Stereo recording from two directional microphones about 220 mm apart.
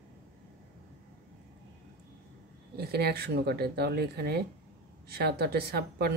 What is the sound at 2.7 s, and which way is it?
A woman's voice, 45° right (ahead or behind).